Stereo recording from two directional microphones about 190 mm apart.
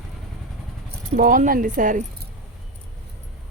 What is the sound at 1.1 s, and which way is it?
Speech, 45° right (ahead or behind).